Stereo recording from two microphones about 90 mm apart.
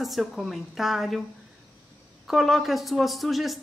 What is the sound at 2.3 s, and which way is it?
Speech, centre (ahead or behind).